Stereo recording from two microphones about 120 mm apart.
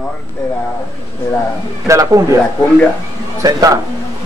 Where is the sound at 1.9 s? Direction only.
25° right (ahead or behind).